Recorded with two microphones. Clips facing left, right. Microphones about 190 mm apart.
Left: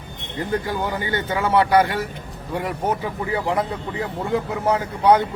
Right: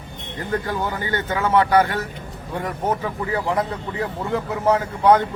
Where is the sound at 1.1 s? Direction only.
10° left (ahead or behind).